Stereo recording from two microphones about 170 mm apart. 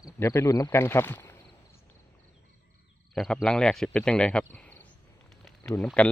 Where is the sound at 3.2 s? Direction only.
5° left (ahead or behind).